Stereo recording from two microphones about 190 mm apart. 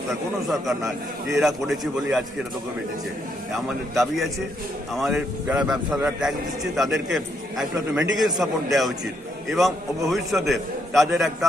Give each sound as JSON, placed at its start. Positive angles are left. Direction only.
{"t": 0.1, "sound": "a man's voice", "side_deg": 0}
{"t": 3.9, "sound": "a man's voice", "side_deg": 0}